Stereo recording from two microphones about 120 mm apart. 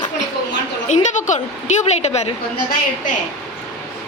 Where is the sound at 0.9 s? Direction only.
90° left; by 2.3 s 65° left (ahead or behind).